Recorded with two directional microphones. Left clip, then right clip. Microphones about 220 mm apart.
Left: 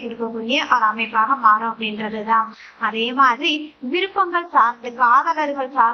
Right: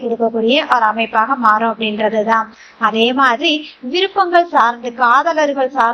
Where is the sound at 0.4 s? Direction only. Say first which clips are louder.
Right 3 dB; 20° right (ahead or behind).